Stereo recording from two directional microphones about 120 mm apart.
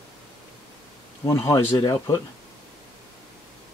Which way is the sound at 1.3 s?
25° left (ahead or behind).